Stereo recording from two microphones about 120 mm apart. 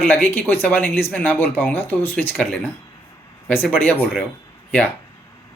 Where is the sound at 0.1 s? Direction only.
15° left (ahead or behind).